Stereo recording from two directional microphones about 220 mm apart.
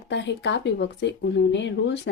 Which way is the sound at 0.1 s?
50° left (ahead or behind).